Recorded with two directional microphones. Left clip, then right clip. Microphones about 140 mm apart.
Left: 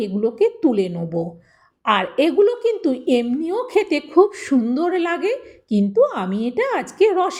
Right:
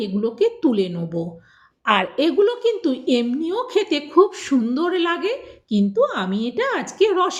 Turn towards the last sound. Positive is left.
turn(degrees=35)  # may be behind; listen again after turning